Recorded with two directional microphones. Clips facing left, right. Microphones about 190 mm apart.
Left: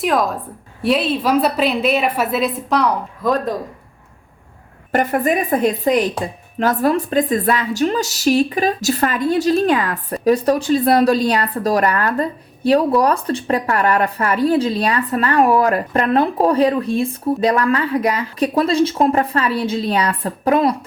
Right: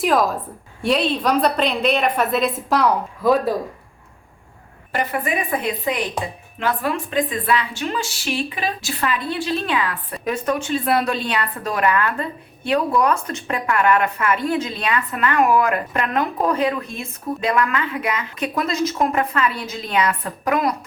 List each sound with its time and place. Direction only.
0.0 s a woman's voice: centre (ahead or behind)
4.9 s a woman's voice: 45° left (ahead or behind); by 20.7 s 30° left (ahead or behind)